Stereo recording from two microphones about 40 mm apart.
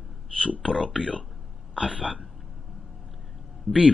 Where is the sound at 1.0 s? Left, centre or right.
Left.